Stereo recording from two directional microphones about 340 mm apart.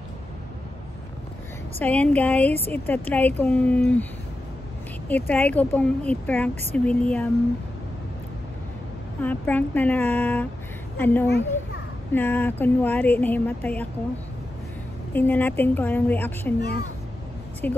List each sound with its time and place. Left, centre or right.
1.8 s speech: centre
9.2 s speech: centre
11.2 s a child's voice: left
12.1 s speech: centre
15.1 s speech: centre
17.6 s speech: centre